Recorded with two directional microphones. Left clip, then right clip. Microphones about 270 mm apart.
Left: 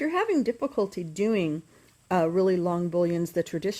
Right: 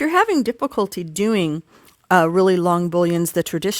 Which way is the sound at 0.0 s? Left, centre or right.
Right.